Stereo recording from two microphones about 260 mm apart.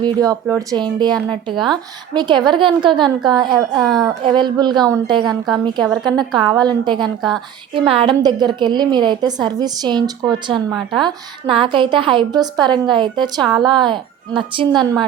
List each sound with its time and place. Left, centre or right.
0.0 s a woman's voice: centre
3.7 s a woman's voice: centre
4.4 s a woman's voice: centre
5.8 s a woman's voice: centre
6.1 s a woman's voice: centre
7.2 s a woman's voice: centre
7.7 s a woman's voice: centre